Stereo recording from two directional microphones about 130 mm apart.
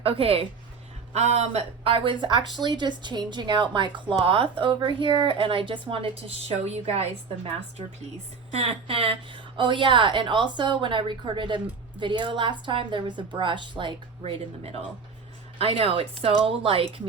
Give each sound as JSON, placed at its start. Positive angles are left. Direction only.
{"t": 0.0, "sound": "speech", "side_deg": -45}
{"t": 1.1, "sound": "speech", "side_deg": -60}
{"t": 8.4, "sound": "speech", "side_deg": -50}